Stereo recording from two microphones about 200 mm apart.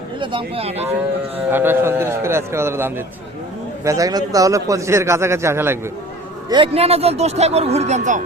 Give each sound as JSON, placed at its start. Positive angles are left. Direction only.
{"t": 0.2, "sound": "speech", "side_deg": -25}
{"t": 1.5, "sound": "a man's voice", "side_deg": -10}
{"t": 6.5, "sound": "speech", "side_deg": -25}